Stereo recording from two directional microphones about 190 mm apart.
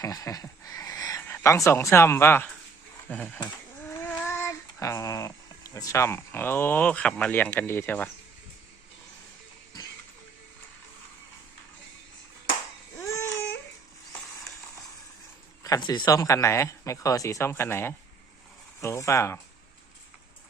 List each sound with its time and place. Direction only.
0.0 s speech: 20° left (ahead or behind)
3.8 s child singing: 10° left (ahead or behind)
13.0 s baby cry: 15° left (ahead or behind)
15.6 s speech: 20° left (ahead or behind)